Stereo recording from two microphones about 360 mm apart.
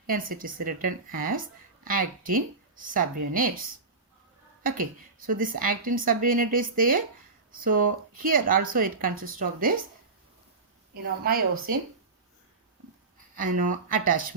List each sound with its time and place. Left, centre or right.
0.1 s a woman's voice: right
4.6 s a woman's voice: right
10.9 s a woman's voice: right
13.6 s a woman's voice: right